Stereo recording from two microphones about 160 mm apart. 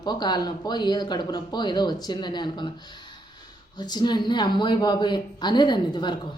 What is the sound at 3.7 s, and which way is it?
Speech, 25° left (ahead or behind).